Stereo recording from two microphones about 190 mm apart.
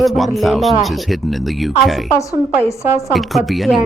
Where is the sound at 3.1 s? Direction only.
Centre (ahead or behind).